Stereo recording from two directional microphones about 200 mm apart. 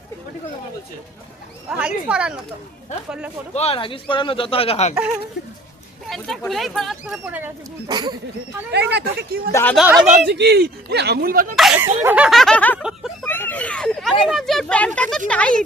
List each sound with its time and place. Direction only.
1.7 s speech: 5° right (ahead or behind)
3.5 s speech: 30° left (ahead or behind)
6.1 s speech: centre (ahead or behind)
7.9 s speech: 20° right (ahead or behind)
8.7 s speech: 55° right (ahead or behind)
9.5 s speech: 10° left (ahead or behind)
9.7 s speech: 5° right (ahead or behind)
10.2 s speech: 55° right (ahead or behind)
11.8 s speech: 10° right (ahead or behind)